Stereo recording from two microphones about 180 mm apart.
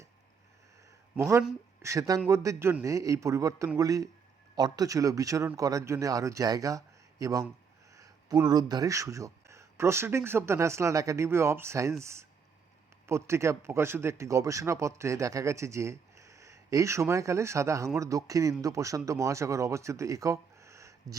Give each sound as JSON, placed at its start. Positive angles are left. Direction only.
{"t": 1.8, "sound": "a man's voice", "side_deg": -15}